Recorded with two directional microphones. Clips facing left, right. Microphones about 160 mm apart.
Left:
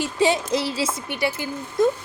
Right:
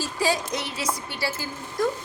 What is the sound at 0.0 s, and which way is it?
A woman's voice, 20° left (ahead or behind).